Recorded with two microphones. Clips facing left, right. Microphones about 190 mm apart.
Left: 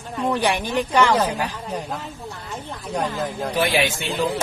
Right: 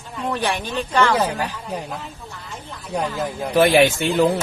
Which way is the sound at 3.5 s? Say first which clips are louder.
Right 8 dB; 50° right (ahead or behind).